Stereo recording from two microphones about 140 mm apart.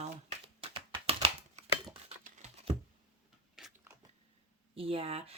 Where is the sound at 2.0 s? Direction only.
45° right (ahead or behind).